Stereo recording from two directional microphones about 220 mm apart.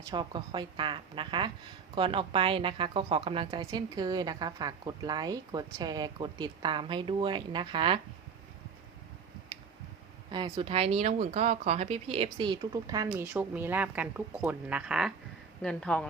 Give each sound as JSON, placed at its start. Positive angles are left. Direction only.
{"t": 0.1, "sound": "a woman's voice", "side_deg": -20}
{"t": 10.3, "sound": "a woman's voice", "side_deg": -20}
{"t": 13.2, "sound": "speech", "side_deg": -5}